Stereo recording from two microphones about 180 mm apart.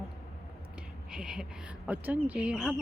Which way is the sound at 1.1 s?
5° right (ahead or behind).